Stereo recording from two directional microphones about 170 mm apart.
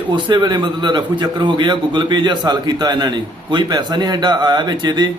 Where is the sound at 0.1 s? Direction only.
25° right (ahead or behind).